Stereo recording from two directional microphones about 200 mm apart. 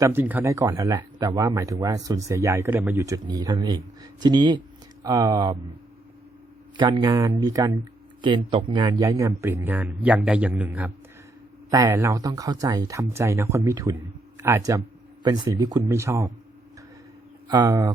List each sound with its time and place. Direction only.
0.0 s a man's voice: 10° right (ahead or behind)
6.7 s a man's voice: 25° right (ahead or behind)
17.5 s a man's voice: 20° right (ahead or behind)